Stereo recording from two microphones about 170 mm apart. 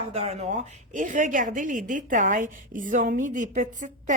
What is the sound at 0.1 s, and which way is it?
Speech, 40° right (ahead or behind).